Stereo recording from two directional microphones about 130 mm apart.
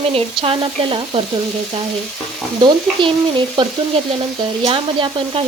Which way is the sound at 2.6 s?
40° right (ahead or behind).